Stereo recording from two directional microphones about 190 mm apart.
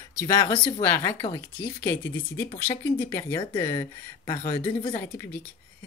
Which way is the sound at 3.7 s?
25° left (ahead or behind).